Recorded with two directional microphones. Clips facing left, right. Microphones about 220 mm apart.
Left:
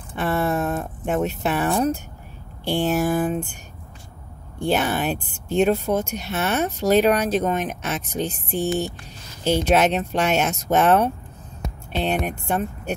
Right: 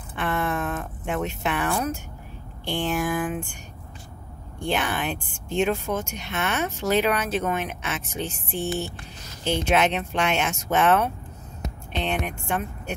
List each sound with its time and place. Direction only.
0.1 s a sound: 40° left (ahead or behind)
2.6 s speech: 40° left (ahead or behind)
4.6 s speech: 40° left (ahead or behind)